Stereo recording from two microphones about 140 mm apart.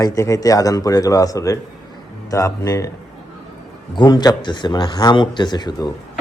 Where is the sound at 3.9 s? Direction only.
30° left (ahead or behind).